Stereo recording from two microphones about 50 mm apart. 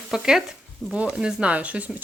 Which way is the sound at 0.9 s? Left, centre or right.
Centre.